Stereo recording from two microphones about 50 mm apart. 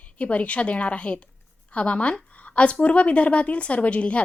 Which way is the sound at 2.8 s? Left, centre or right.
Left.